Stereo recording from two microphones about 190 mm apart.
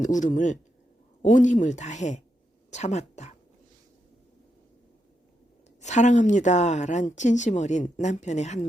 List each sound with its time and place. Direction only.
0.0 s a woman's voice: 40° left (ahead or behind)
5.8 s speech: 40° left (ahead or behind)